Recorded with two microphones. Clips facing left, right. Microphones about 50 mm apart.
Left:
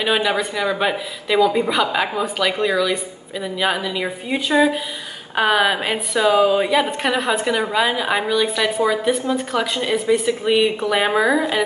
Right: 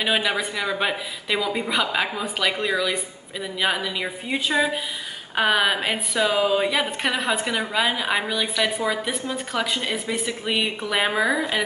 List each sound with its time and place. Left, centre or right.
0.0 s speech: centre